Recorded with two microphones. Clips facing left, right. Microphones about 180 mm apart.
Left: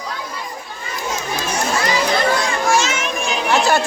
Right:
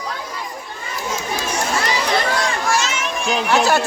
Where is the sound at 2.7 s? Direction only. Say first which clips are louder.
Left 3 dB; 50° left (ahead or behind).